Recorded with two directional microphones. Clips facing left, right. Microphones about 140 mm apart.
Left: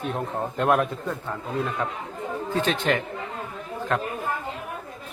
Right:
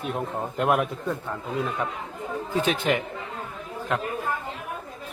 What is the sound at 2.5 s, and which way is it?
Speech, 10° right (ahead or behind).